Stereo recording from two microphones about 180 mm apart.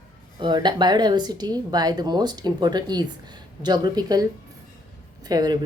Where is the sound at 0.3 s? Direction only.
25° right (ahead or behind).